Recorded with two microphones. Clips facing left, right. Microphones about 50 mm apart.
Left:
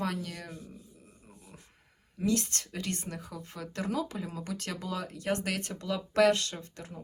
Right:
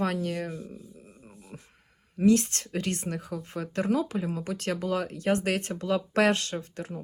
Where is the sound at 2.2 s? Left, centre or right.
Right.